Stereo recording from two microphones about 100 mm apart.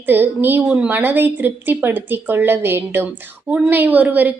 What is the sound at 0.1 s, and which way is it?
A woman's voice, 20° right (ahead or behind).